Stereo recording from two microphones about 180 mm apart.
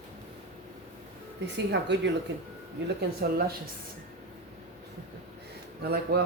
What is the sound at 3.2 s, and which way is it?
Speech, 60° right (ahead or behind).